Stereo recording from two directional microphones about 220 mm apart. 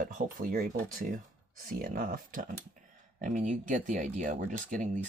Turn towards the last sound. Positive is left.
turn(degrees=-35)  # may be behind; listen again after turning